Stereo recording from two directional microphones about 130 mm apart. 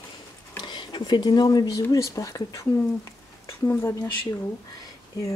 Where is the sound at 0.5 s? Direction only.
35° left (ahead or behind).